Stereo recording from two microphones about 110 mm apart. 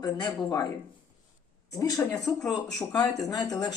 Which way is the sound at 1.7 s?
35° left (ahead or behind).